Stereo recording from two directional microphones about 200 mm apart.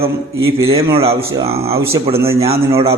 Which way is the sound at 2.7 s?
30° right (ahead or behind).